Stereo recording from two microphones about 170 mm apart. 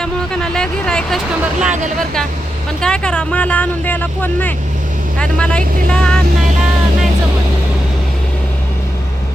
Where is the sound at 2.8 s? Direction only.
5° left (ahead or behind).